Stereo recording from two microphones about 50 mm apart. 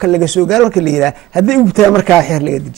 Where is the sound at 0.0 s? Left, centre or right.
Centre.